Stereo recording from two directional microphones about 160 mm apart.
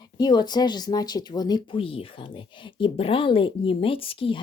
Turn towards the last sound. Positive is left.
turn(degrees=35)  # may be behind; listen again after turning